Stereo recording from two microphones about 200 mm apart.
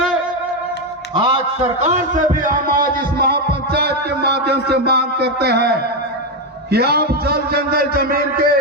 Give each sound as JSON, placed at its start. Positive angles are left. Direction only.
{"t": 1.8, "sound": "a man's voice", "side_deg": -35}